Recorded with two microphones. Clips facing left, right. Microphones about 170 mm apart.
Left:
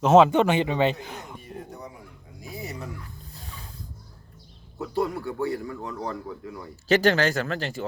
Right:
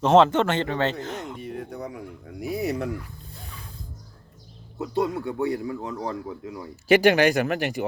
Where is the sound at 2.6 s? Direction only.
65° right (ahead or behind).